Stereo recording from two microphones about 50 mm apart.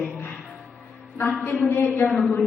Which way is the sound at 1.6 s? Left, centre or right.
Left.